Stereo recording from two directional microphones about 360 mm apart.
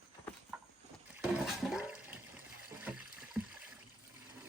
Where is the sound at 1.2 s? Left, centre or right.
Centre.